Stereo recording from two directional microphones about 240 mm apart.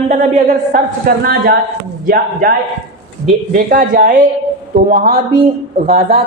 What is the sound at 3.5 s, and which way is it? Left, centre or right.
Speech, right.